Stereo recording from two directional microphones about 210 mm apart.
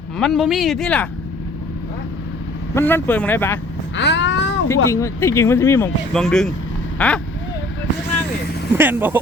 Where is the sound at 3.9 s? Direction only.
55° left (ahead or behind).